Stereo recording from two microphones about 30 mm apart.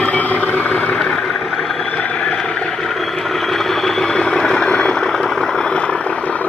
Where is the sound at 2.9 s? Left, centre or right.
Centre.